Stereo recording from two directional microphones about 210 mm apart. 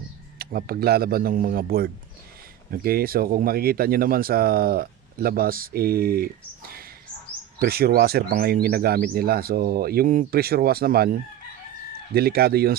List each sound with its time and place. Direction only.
0.3 s speech: 45° right (ahead or behind)
12.1 s speech: 45° right (ahead or behind)